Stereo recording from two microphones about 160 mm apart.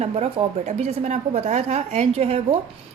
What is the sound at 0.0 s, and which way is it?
A woman's voice, 40° right (ahead or behind).